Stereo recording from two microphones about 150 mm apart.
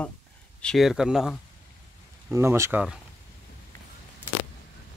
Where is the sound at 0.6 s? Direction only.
Centre (ahead or behind).